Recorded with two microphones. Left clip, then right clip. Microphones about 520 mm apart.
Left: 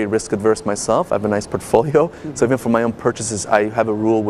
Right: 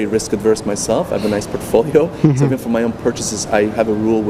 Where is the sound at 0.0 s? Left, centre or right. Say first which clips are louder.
Right 1 dB; left.